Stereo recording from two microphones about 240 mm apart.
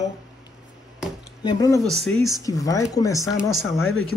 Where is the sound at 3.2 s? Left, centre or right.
Centre.